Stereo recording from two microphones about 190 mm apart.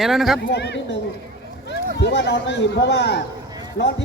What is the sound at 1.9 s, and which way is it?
A man's voice, 60° left (ahead or behind).